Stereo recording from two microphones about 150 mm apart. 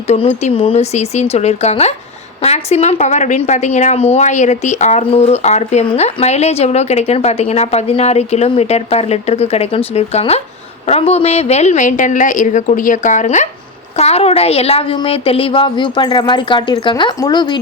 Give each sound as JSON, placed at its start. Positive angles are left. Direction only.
{"t": 0.1, "sound": "a woman's voice", "side_deg": 45}